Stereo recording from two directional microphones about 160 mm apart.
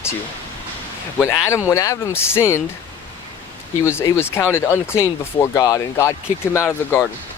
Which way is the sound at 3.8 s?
15° left (ahead or behind).